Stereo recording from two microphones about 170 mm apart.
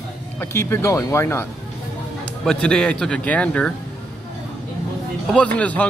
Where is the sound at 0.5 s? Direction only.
15° left (ahead or behind).